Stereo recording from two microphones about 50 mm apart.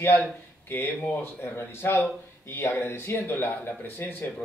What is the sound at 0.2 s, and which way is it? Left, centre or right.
Speech, left.